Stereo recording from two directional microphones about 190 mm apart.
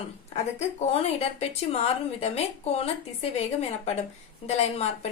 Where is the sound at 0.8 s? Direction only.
35° left (ahead or behind).